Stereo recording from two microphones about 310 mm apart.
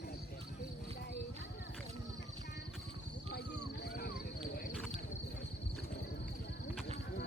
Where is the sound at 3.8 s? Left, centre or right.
Left.